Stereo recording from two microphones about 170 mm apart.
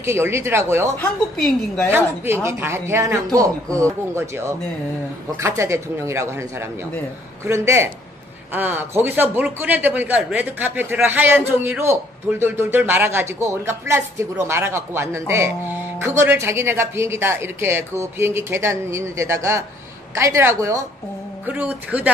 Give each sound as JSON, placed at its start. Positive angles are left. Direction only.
{"t": 0.0, "sound": "a man's voice", "side_deg": -15}
{"t": 0.9, "sound": "a woman's voice", "side_deg": 5}
{"t": 1.9, "sound": "a man's voice", "side_deg": -15}